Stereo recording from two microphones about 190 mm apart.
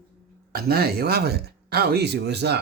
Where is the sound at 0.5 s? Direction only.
55° right (ahead or behind).